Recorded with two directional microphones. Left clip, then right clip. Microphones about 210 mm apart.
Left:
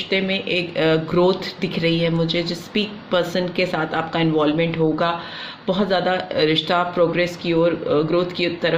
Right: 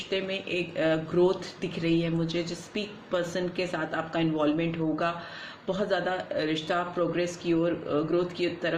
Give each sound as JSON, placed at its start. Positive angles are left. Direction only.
{"t": 0.1, "sound": "speech", "side_deg": 35}